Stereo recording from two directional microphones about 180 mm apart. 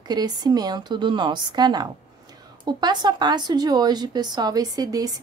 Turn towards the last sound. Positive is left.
turn(degrees=-20)  # may be behind; listen again after turning